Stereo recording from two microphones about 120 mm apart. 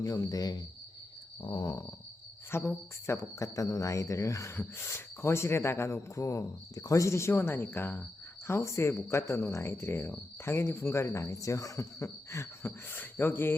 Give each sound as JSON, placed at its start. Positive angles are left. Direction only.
{"t": 0.0, "sound": "speech", "side_deg": 30}
{"t": 1.4, "sound": "a sound", "side_deg": 45}
{"t": 2.5, "sound": "speech", "side_deg": 20}